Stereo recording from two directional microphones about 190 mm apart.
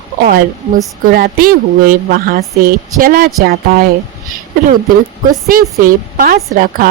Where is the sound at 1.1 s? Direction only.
50° right (ahead or behind).